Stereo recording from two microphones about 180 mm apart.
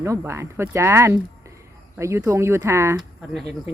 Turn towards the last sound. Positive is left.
turn(degrees=0)  # may be behind; listen again after turning